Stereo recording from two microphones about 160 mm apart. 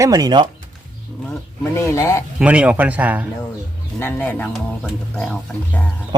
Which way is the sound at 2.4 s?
10° right (ahead or behind).